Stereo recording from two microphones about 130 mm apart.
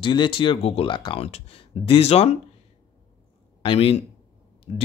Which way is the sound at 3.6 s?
50° left (ahead or behind).